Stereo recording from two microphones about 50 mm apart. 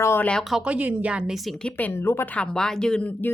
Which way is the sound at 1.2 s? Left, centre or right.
Centre.